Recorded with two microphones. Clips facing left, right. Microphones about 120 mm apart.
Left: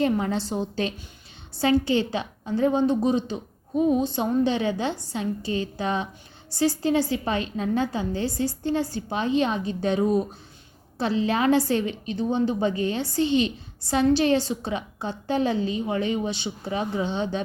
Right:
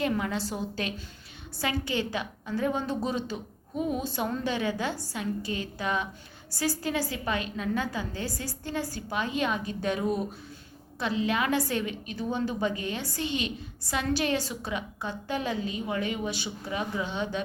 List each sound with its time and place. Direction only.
0.0 s a woman's voice: 30° left (ahead or behind)